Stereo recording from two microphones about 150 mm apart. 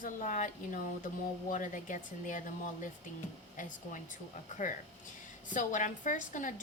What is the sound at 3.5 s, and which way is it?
Speech, 60° left (ahead or behind).